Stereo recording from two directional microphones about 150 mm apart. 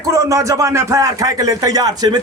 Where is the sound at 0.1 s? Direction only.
20° right (ahead or behind).